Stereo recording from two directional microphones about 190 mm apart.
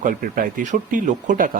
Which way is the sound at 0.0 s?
45° right (ahead or behind).